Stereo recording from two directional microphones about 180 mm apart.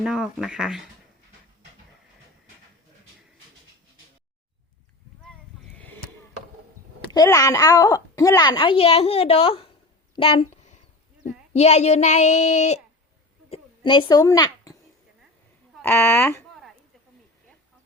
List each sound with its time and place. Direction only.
0.0 s speech: 5° right (ahead or behind)
5.7 s chop: 10° left (ahead or behind)
7.1 s a woman's voice: 20° left (ahead or behind); by 12.8 s 40° left (ahead or behind)
13.5 s a sound: 25° left (ahead or behind)
15.8 s speech: 15° left (ahead or behind)